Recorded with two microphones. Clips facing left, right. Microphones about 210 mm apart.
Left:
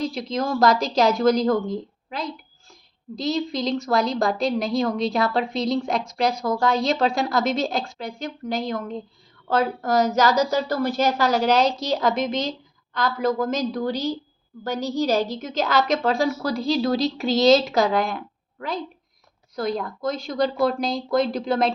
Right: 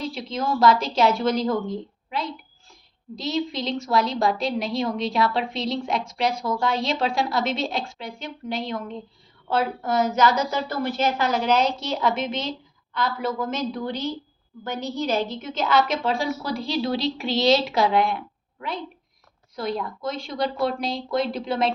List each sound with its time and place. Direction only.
0.0 s a woman's voice: 40° left (ahead or behind)
19.5 s a woman's voice: 40° left (ahead or behind)